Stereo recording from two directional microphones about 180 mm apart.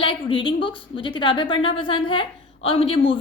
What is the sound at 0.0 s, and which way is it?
A woman's voice, 30° left (ahead or behind).